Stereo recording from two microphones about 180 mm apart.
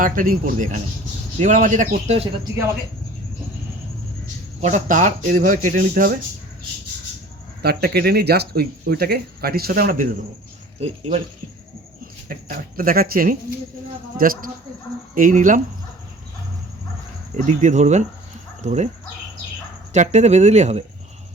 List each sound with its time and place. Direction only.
0.0 s speech: 50° right (ahead or behind)
4.6 s speech: 45° right (ahead or behind)
7.6 s speech: 65° right (ahead or behind)
10.8 s speech: 35° right (ahead or behind)
12.3 s speech: 50° right (ahead or behind)
17.3 s speech: 45° right (ahead or behind)
19.9 s speech: 40° right (ahead or behind)